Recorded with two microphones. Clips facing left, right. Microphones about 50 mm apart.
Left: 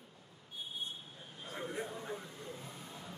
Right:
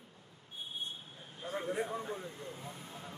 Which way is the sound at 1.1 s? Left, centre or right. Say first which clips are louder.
Right 7 dB; right.